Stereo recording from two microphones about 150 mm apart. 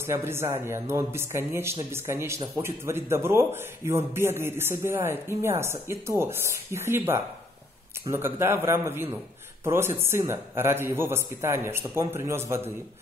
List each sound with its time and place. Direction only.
0.0 s speech: 15° right (ahead or behind)